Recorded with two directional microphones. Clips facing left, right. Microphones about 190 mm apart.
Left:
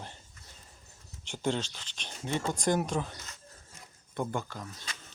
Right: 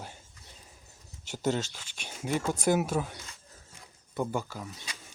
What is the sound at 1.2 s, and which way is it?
Speech, 5° right (ahead or behind).